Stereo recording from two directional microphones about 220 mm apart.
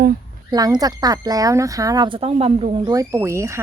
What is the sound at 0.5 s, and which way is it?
Speech, 15° right (ahead or behind).